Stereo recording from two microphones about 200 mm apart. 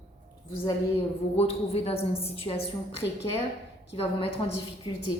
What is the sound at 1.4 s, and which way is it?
A woman's voice, 30° left (ahead or behind).